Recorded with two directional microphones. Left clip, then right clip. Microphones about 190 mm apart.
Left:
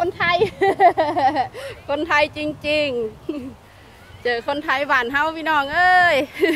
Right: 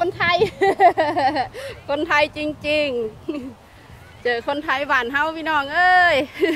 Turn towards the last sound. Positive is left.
turn(degrees=25)  # may be behind; listen again after turning